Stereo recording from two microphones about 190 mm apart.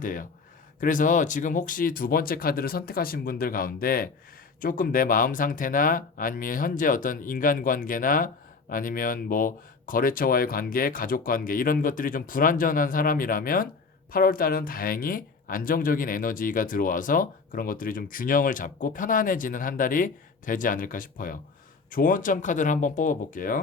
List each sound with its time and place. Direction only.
0.0 s speech: 45° left (ahead or behind)